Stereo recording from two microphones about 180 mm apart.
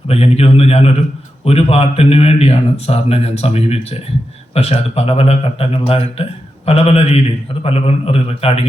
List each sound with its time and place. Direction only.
0.1 s speech: 35° left (ahead or behind)